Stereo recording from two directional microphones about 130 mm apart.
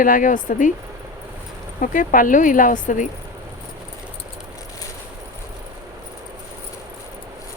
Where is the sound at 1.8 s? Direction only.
90° left.